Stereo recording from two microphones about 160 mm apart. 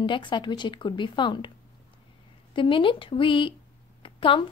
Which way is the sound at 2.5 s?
30° left (ahead or behind).